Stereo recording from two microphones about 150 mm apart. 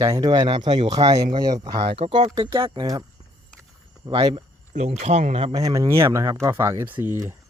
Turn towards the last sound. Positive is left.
turn(degrees=-15)  # may be behind; listen again after turning